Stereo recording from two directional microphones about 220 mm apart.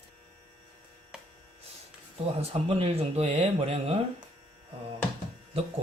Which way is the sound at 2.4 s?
25° right (ahead or behind).